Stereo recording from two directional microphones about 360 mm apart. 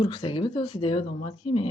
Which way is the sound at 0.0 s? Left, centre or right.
Centre.